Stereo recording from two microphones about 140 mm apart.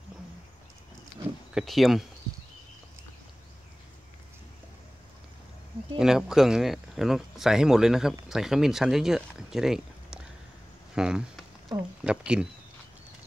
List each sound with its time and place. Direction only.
1.5 s speech: centre (ahead or behind)
5.9 s speech: 5° right (ahead or behind)